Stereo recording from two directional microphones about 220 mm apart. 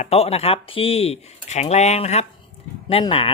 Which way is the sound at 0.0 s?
30° left (ahead or behind).